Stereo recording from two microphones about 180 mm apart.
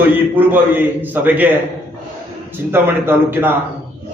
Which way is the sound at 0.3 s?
10° right (ahead or behind).